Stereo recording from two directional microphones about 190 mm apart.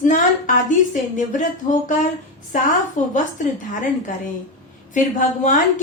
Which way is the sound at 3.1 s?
40° left (ahead or behind).